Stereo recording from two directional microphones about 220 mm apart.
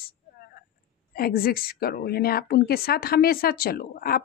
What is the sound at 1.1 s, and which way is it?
A woman's voice, 40° left (ahead or behind).